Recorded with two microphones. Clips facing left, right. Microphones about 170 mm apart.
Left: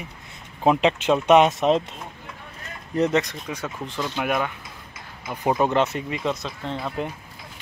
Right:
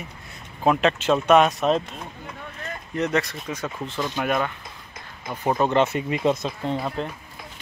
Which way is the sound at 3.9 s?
15° right (ahead or behind).